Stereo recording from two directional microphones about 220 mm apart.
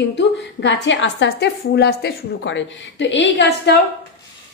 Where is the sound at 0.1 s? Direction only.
55° left (ahead or behind).